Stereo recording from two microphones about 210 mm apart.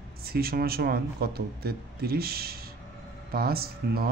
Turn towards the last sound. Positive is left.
turn(degrees=-45)  # may be behind; listen again after turning